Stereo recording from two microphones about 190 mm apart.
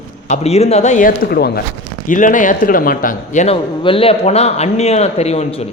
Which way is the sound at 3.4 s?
30° left (ahead or behind).